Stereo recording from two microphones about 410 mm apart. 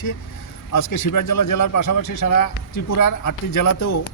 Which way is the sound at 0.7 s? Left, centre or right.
Left.